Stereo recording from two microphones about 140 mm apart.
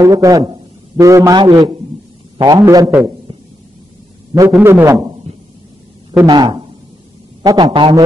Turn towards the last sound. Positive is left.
turn(degrees=-35)  # may be behind; listen again after turning